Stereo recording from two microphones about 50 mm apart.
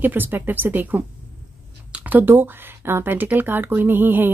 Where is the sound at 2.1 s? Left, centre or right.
Right.